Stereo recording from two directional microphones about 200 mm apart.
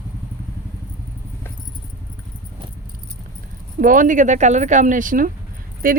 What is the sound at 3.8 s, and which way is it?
Speech, 40° right (ahead or behind).